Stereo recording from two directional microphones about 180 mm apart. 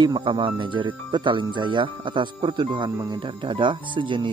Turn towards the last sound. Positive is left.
turn(degrees=-25)  # may be behind; listen again after turning